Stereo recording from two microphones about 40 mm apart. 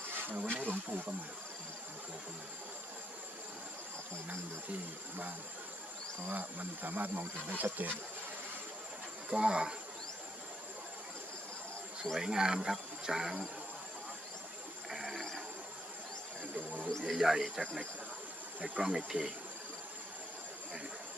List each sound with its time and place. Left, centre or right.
0.2 s speech: right
6.3 s speech: right
9.3 s speech: right
12.1 s speech: centre
14.8 s a sound: centre
15.1 s insect: centre
17.2 s speech: right
17.6 s speech: centre
18.8 s speech: centre